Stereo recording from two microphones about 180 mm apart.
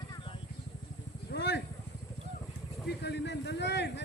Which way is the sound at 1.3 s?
65° left (ahead or behind).